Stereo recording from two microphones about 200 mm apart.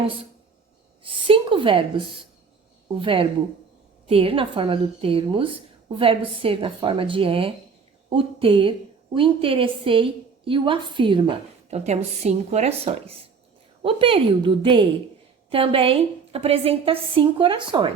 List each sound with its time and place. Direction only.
1.0 s a woman's voice: 25° right (ahead or behind)